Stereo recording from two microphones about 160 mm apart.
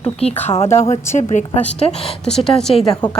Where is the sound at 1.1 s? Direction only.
50° left (ahead or behind).